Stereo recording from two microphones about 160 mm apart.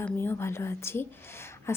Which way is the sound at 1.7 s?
15° left (ahead or behind).